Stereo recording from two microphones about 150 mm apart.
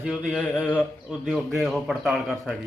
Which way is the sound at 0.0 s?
Centre (ahead or behind).